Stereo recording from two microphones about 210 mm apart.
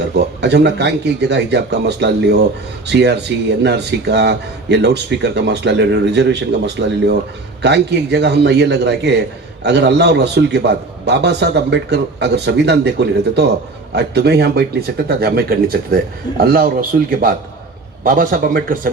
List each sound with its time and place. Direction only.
0.1 s speech: 55° right (ahead or behind)